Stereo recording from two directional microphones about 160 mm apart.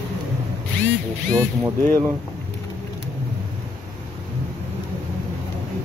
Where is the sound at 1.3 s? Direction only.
20° right (ahead or behind).